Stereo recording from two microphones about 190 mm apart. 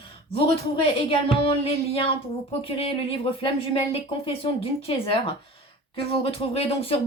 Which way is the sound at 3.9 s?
30° left (ahead or behind).